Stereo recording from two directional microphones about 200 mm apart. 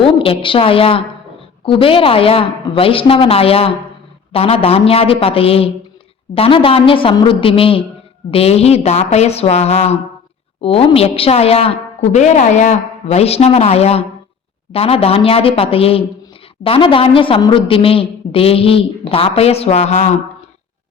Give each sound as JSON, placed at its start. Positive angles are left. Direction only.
{"t": 0.0, "sound": "a woman's voice", "side_deg": 25}